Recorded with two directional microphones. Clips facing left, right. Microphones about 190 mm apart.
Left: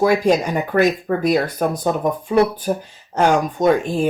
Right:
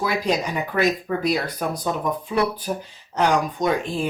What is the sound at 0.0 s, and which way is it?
Speech, 50° left (ahead or behind).